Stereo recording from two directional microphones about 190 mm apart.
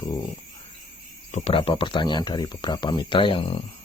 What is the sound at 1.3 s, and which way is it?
Speech, 30° left (ahead or behind).